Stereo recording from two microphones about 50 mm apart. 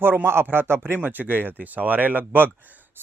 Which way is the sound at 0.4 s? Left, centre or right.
Right.